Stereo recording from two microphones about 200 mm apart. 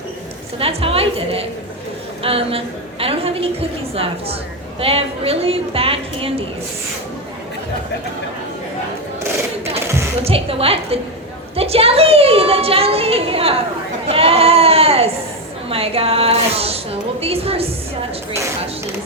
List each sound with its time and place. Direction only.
0.6 s a woman's voice: 30° right (ahead or behind)
10.2 s a woman's voice: 30° right (ahead or behind)
14.1 s sheep: 30° right (ahead or behind)
15.7 s a woman's voice: 30° right (ahead or behind)